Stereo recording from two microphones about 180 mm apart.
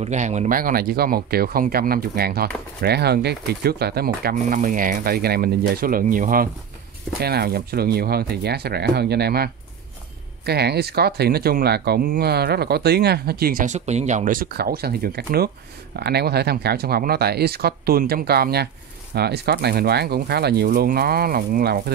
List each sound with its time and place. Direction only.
0.0 s speech: 40° right (ahead or behind)